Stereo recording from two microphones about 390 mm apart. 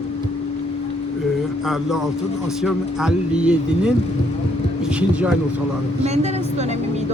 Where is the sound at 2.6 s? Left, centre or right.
Centre.